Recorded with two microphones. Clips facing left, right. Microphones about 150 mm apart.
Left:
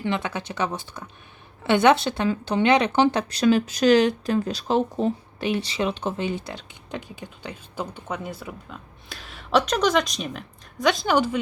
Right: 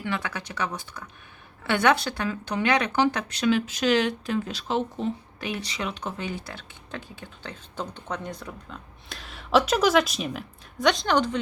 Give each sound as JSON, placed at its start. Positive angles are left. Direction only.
{"t": 0.0, "sound": "speech", "side_deg": 25}